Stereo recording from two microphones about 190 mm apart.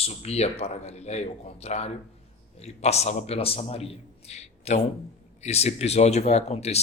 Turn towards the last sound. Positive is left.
turn(degrees=35)  # may be behind; listen again after turning